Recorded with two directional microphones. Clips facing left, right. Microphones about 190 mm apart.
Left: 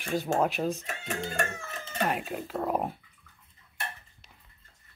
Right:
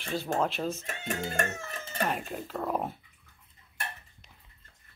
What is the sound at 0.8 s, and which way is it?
Speech, 50° right (ahead or behind).